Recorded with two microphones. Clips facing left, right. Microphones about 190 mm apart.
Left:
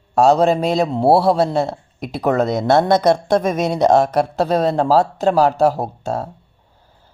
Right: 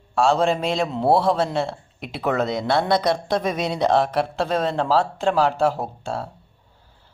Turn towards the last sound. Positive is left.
turn(degrees=40)  # may be behind; listen again after turning